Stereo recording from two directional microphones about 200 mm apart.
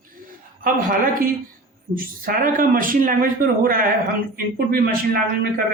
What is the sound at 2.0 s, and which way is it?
Speech, 45° right (ahead or behind).